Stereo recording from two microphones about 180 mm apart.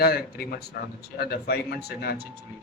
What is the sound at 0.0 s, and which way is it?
A man's voice, 55° left (ahead or behind).